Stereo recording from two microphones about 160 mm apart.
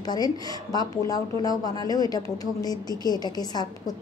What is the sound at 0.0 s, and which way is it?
A woman's voice, 25° left (ahead or behind).